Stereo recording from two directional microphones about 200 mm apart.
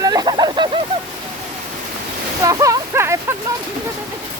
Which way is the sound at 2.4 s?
15° right (ahead or behind).